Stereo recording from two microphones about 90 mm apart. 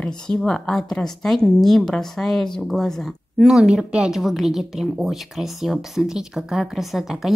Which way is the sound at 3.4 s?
5° right (ahead or behind).